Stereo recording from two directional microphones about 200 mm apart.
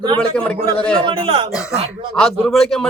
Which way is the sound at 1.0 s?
25° right (ahead or behind).